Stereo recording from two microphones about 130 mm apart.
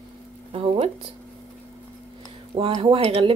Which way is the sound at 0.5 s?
45° right (ahead or behind).